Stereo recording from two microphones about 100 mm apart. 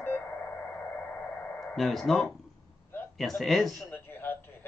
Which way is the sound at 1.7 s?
Centre (ahead or behind).